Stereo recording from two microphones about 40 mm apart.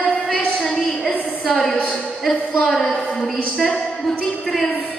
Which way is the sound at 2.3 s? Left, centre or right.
Centre.